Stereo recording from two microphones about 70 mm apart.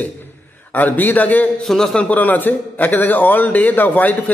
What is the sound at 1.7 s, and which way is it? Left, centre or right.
Speech, centre.